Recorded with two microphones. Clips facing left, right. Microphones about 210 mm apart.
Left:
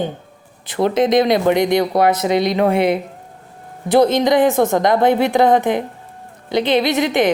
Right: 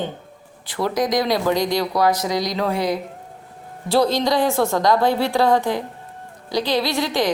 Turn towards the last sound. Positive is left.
turn(degrees=20)  # may be behind; listen again after turning